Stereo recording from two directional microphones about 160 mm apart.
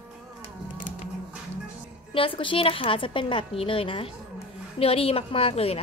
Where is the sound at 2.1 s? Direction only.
35° left (ahead or behind).